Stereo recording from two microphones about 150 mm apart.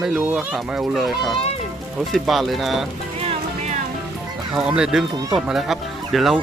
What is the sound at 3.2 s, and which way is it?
Music, 55° right (ahead or behind).